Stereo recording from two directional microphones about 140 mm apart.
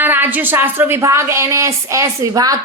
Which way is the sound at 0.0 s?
15° right (ahead or behind).